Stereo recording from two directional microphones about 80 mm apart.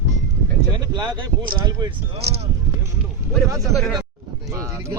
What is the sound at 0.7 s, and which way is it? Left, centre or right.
Speech, right.